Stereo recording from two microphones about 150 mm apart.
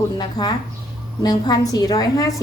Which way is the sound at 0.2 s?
30° left (ahead or behind).